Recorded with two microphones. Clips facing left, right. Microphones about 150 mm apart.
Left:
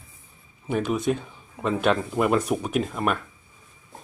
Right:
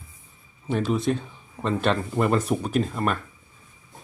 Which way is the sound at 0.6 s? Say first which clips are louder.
Even; 5° left (ahead or behind).